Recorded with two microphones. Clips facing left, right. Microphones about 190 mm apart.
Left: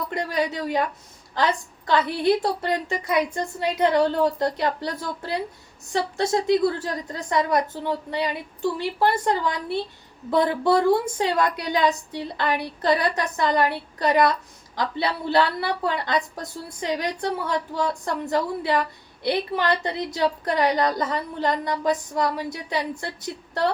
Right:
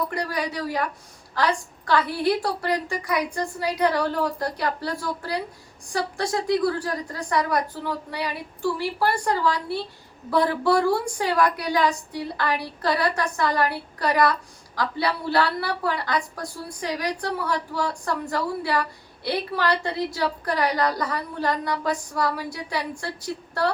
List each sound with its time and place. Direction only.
0.1 s a woman's voice: 20° left (ahead or behind)